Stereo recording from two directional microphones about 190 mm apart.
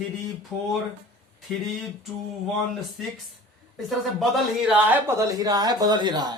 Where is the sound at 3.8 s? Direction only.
Centre (ahead or behind); by 6.3 s 25° right (ahead or behind).